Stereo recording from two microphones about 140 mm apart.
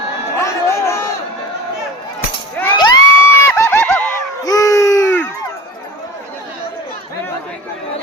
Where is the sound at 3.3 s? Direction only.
20° left (ahead or behind).